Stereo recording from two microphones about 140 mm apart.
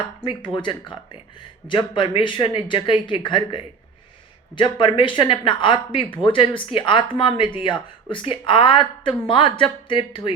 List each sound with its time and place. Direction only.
0.2 s a woman's voice: 35° left (ahead or behind)